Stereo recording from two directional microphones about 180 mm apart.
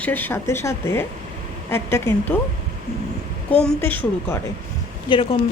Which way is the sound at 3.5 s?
5° left (ahead or behind).